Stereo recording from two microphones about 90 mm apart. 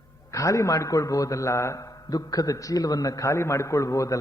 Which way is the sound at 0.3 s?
35° left (ahead or behind).